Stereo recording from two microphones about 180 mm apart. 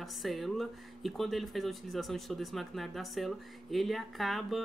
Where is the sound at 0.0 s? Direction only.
Centre (ahead or behind).